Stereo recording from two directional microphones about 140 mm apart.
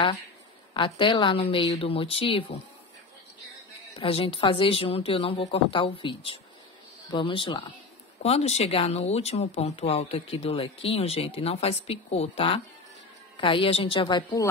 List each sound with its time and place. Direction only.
0.7 s a woman's voice: 35° left (ahead or behind)
4.0 s a woman's voice: 40° left (ahead or behind)
8.2 s a woman's voice: 50° left (ahead or behind); by 14.4 s 35° left (ahead or behind)